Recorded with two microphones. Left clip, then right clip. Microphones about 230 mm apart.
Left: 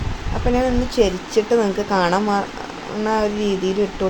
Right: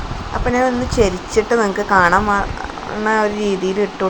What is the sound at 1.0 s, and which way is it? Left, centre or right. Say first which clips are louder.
Speech: right 2 dB; right.